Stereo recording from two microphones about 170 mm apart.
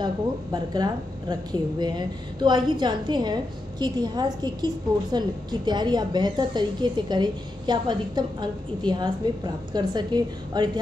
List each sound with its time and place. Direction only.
0.0 s a woman's voice: 25° right (ahead or behind)